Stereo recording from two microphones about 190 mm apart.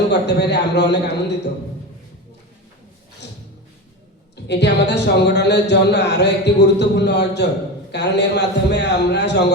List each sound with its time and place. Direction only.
0.1 s a man's voice: 60° left (ahead or behind)
4.4 s a man's voice: 65° left (ahead or behind)